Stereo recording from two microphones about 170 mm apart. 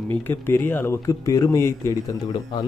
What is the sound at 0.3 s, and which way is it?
Speech, 10° left (ahead or behind).